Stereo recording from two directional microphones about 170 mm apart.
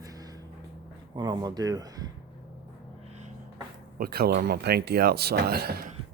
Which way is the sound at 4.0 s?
65° right (ahead or behind).